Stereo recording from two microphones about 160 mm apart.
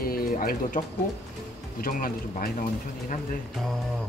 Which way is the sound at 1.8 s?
60° left (ahead or behind).